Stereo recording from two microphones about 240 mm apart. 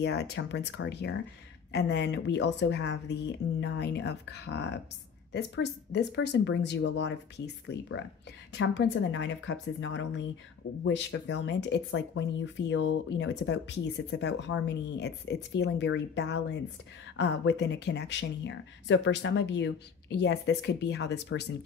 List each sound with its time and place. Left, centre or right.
0.0 s speech: left